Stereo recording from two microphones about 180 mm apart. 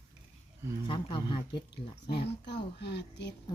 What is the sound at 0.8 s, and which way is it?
Speech, 25° left (ahead or behind).